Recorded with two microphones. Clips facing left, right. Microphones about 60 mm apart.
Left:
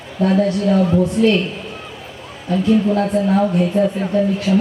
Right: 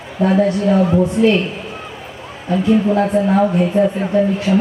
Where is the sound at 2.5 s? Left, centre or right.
Centre.